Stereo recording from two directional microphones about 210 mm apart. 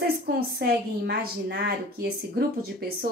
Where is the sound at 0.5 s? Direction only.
50° right (ahead or behind).